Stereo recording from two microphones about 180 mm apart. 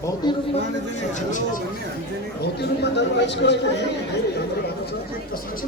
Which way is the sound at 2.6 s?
70° left (ahead or behind).